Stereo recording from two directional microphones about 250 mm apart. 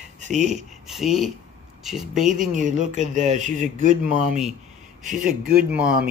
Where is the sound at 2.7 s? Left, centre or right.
Right.